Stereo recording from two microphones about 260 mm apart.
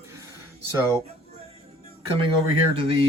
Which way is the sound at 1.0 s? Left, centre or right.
Right.